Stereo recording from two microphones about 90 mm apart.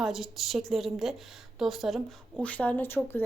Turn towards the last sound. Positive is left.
turn(degrees=20)  # may be behind; listen again after turning